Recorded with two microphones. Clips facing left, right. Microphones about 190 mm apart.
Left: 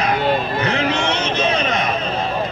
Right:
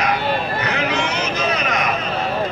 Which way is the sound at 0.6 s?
30° left (ahead or behind).